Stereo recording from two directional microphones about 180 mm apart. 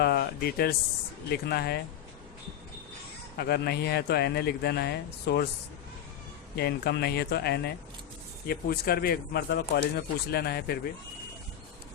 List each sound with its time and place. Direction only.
0.0 s speech: 60° left (ahead or behind)
3.3 s speech: 60° left (ahead or behind)
6.6 s speech: 60° left (ahead or behind)